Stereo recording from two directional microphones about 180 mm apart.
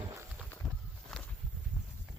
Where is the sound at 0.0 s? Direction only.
15° right (ahead or behind).